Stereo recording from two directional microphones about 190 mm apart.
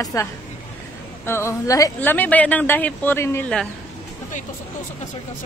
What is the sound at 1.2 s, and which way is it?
A woman's voice, 15° left (ahead or behind).